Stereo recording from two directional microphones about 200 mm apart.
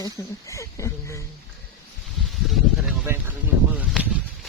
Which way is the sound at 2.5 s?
Centre (ahead or behind).